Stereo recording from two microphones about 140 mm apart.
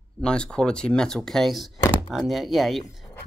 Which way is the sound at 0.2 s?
5° left (ahead or behind).